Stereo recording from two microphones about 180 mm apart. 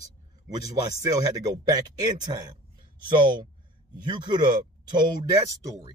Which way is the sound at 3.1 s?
25° right (ahead or behind).